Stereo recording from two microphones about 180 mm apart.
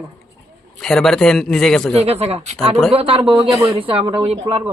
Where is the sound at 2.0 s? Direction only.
35° right (ahead or behind).